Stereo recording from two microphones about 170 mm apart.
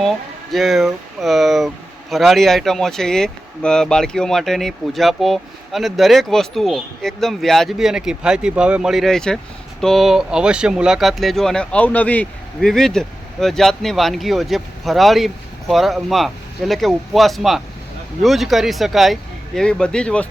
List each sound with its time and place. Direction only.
0.5 s speech: centre (ahead or behind)